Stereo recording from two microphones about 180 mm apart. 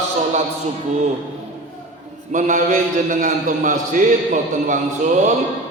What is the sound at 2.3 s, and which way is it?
A man's voice, 45° right (ahead or behind).